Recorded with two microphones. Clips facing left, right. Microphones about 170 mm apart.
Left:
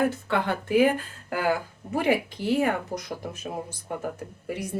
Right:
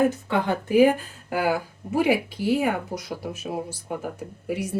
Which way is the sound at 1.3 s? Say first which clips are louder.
Right 2 dB; 10° right (ahead or behind).